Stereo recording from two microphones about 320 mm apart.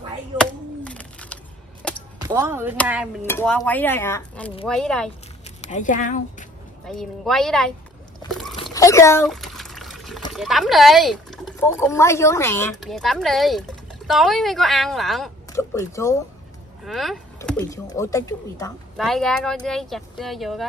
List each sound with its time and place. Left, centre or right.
0.4 s chop: centre
1.8 s arrow: centre
2.1 s speech: centre
5.6 s speech: left
7.0 s speech: centre
8.3 s a sound: centre
8.6 s water: centre
10.3 s speech: centre